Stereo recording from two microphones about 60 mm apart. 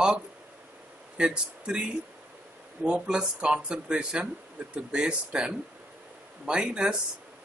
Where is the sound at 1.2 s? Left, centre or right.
Centre.